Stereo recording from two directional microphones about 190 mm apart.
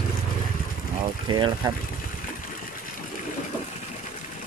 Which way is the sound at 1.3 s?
25° right (ahead or behind).